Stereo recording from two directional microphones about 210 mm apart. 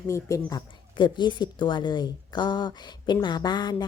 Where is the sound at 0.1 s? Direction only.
15° left (ahead or behind).